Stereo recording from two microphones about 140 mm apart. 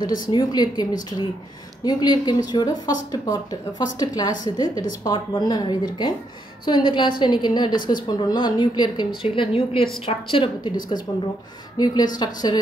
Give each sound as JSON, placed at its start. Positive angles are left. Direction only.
{"t": 0.3, "sound": "a woman's voice", "side_deg": 30}
{"t": 1.9, "sound": "a woman's voice", "side_deg": 30}